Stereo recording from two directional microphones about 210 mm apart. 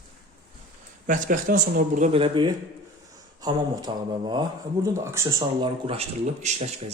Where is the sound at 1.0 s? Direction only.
40° right (ahead or behind).